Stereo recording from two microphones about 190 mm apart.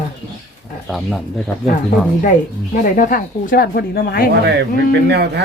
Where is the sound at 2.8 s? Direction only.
45° left (ahead or behind).